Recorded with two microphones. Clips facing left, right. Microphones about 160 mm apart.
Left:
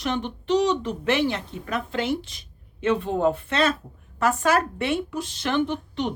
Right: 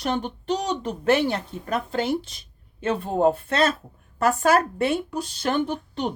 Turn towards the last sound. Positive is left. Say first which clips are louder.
# left 1 dB
turn(degrees=-40)  # may be behind; listen again after turning